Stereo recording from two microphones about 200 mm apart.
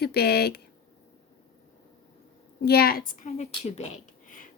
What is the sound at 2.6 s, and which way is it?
A woman's voice, 50° left (ahead or behind).